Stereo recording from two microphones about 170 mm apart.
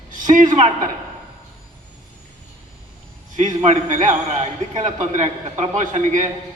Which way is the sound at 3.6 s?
45° right (ahead or behind).